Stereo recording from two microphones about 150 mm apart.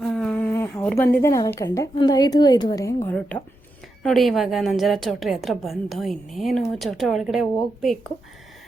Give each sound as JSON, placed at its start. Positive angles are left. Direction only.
{"t": 0.0, "sound": "a woman's voice", "side_deg": 5}